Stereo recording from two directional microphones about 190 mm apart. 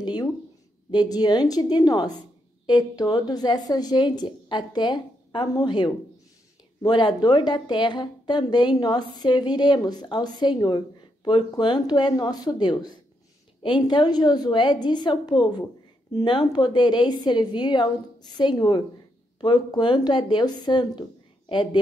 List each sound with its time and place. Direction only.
0.0 s a sound: 20° left (ahead or behind)
0.9 s a woman's voice: 20° left (ahead or behind)
13.8 s a woman's voice: 20° left (ahead or behind)